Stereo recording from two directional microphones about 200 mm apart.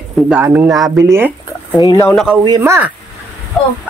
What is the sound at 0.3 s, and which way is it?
Speech, 10° right (ahead or behind).